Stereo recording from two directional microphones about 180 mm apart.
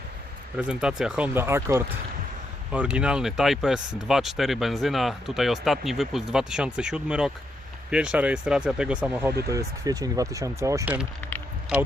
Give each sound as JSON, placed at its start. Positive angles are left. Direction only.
{"t": 0.5, "sound": "speech", "side_deg": -5}
{"t": 9.5, "sound": "speech", "side_deg": -20}